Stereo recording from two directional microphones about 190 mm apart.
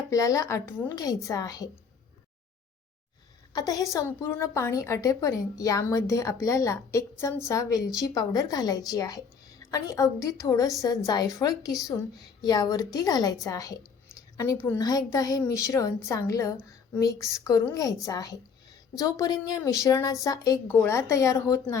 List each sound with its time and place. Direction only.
0.1 s a woman's voice: 15° left (ahead or behind)
3.5 s a woman's voice: 20° left (ahead or behind)